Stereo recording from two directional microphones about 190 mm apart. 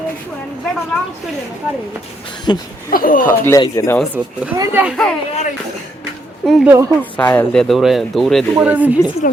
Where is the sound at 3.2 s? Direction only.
10° left (ahead or behind).